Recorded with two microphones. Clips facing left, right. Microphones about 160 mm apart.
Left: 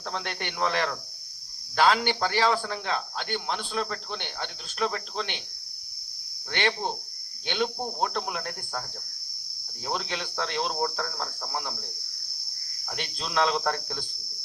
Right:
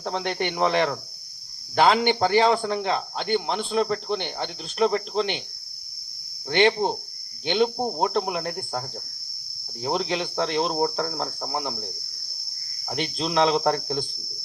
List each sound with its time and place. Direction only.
0.0 s speech: 25° right (ahead or behind)
6.5 s speech: 25° right (ahead or behind)
9.8 s speech: 25° right (ahead or behind)